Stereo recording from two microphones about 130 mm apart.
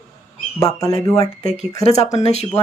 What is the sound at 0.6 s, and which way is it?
Speech, 25° left (ahead or behind).